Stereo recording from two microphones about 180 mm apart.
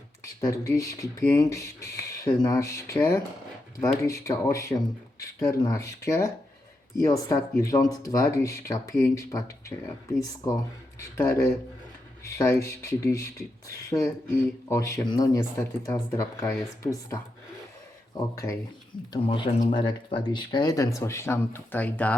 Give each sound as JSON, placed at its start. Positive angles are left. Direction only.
{"t": 0.4, "sound": "speech", "side_deg": 20}
{"t": 12.4, "sound": "speech", "side_deg": 15}